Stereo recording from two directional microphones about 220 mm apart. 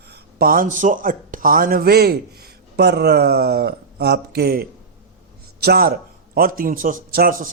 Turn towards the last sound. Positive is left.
turn(degrees=-40)  # may be behind; listen again after turning